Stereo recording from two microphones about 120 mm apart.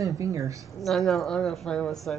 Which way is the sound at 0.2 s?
25° right (ahead or behind).